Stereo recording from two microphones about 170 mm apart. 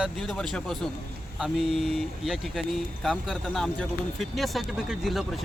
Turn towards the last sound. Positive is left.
turn(degrees=0)  # may be behind; listen again after turning